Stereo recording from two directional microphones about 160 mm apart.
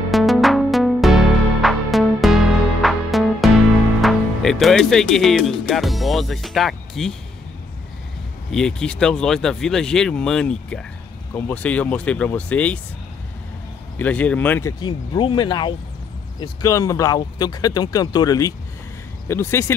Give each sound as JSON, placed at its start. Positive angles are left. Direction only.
{"t": 0.1, "sound": "music", "side_deg": 0}
{"t": 4.0, "sound": "speech", "side_deg": 0}
{"t": 8.5, "sound": "speech", "side_deg": 5}
{"t": 13.9, "sound": "speech", "side_deg": 10}